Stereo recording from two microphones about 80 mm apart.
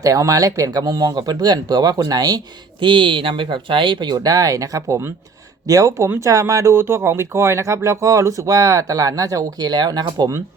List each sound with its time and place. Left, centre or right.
0.0 s speech: right
2.8 s speech: right
4.1 s speech: right